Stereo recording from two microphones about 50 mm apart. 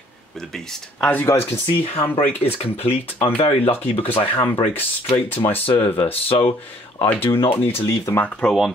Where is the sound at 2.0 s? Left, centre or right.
Left.